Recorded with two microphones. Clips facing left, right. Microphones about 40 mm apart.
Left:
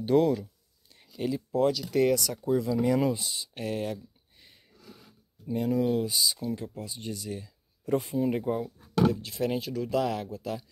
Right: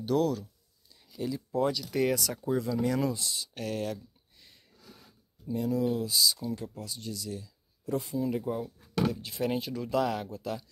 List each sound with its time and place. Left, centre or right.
0.0 s speech: left
1.5 s speech: centre
2.8 s speech: centre
3.3 s a sound: centre
5.5 s speech: left
6.3 s speech: centre
7.0 s speech: left
9.1 s speech: centre